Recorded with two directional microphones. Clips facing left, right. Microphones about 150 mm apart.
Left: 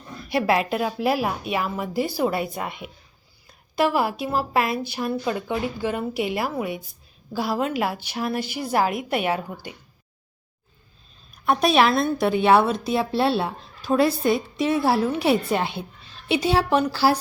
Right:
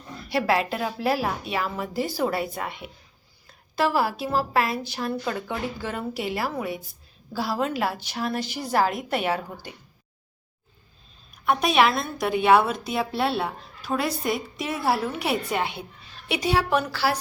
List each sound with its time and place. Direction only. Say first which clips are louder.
0.3 s a woman's voice: left 2 dB; 15° left (ahead or behind)
11.4 s a woman's voice: left 2 dB; 35° left (ahead or behind)